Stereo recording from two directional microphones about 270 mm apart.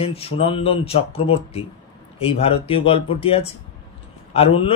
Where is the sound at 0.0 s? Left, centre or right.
Left.